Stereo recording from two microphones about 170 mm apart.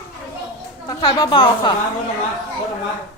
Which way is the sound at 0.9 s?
25° left (ahead or behind).